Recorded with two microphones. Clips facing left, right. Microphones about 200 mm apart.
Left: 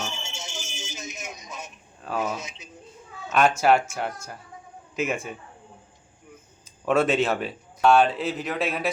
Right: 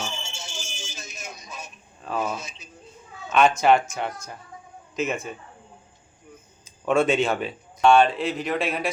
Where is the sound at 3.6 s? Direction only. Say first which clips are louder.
Right 1 dB; 5° left (ahead or behind).